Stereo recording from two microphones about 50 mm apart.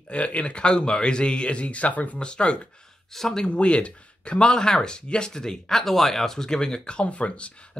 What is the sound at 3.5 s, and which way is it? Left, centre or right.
Speech, left.